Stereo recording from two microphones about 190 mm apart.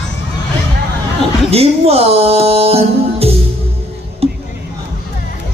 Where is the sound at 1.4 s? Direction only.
30° right (ahead or behind).